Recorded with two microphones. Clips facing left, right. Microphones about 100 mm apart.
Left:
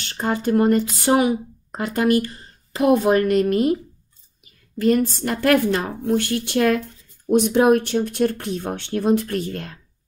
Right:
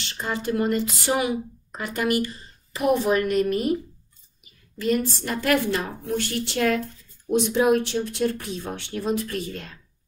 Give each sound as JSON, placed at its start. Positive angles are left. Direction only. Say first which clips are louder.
{"t": 0.0, "sound": "speech", "louder": "left 6 dB", "side_deg": 50}
{"t": 4.7, "sound": "speech", "louder": "left 5 dB", "side_deg": 50}